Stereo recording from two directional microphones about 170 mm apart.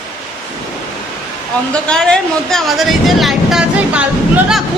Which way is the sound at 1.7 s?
5° left (ahead or behind).